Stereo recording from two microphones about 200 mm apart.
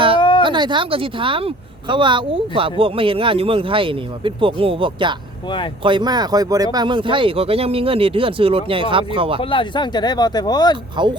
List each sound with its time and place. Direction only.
0.2 s a sound: 25° left (ahead or behind)
0.4 s speech: 20° right (ahead or behind)
9.4 s speech: 25° left (ahead or behind)
11.0 s speech: 25° right (ahead or behind)